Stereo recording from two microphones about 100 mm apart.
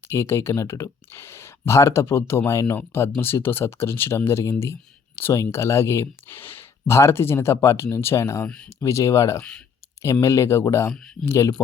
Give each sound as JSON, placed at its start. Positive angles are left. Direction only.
{"t": 0.1, "sound": "speech", "side_deg": 30}
{"t": 8.4, "sound": "speech", "side_deg": 10}
{"t": 8.8, "sound": "speech", "side_deg": 30}
{"t": 9.4, "sound": "speech", "side_deg": 10}
{"t": 10.0, "sound": "speech", "side_deg": 30}
{"t": 10.9, "sound": "speech", "side_deg": 10}
{"t": 11.3, "sound": "speech", "side_deg": 30}